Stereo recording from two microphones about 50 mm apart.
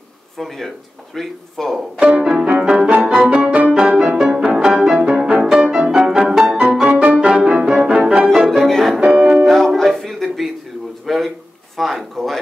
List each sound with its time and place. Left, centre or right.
0.4 s speech: centre
2.0 s music: right
2.2 s music: centre
4.2 s music: centre
7.0 s music: right
8.5 s music: centre
9.0 s music: right
9.4 s music: centre
9.8 s a sound: centre